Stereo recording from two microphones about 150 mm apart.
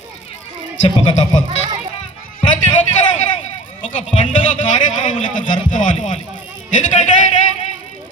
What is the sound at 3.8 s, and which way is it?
Speech, 55° left (ahead or behind).